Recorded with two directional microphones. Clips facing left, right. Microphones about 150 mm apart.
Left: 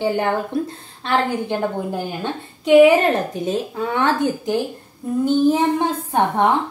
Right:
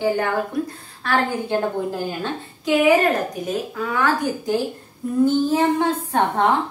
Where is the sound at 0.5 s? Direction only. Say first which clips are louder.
Left 2 dB; 30° left (ahead or behind).